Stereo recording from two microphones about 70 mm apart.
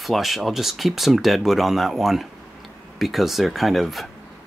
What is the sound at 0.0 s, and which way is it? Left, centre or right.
Speech, centre.